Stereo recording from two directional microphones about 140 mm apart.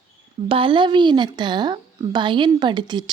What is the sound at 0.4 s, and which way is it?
A woman's voice, 40° right (ahead or behind).